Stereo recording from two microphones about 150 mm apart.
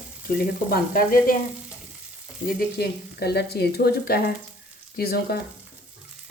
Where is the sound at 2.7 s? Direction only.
90° left.